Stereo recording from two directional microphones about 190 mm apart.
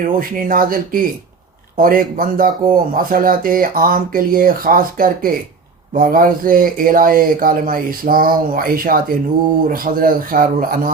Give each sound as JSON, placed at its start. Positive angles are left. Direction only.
{"t": 0.0, "sound": "speech", "side_deg": -45}